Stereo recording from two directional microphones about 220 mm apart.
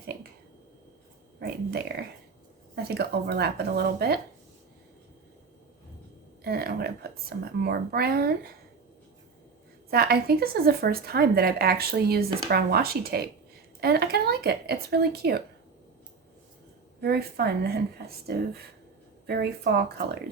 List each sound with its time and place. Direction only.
1.9 s speech: 45° right (ahead or behind)
6.4 s speech: 45° right (ahead or behind)
9.9 s speech: 45° right (ahead or behind)
17.0 s speech: 45° right (ahead or behind)